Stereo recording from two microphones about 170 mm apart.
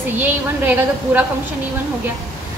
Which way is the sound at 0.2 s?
10° right (ahead or behind).